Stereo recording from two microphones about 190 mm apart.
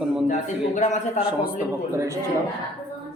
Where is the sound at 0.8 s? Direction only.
40° left (ahead or behind).